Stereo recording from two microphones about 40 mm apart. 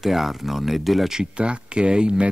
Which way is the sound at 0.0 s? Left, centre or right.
Centre.